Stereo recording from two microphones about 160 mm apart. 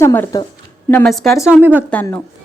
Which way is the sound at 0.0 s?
15° left (ahead or behind).